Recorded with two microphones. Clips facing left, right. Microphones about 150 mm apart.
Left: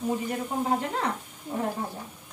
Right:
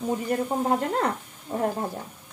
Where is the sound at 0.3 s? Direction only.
45° right (ahead or behind).